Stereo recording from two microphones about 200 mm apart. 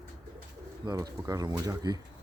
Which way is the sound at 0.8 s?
20° right (ahead or behind).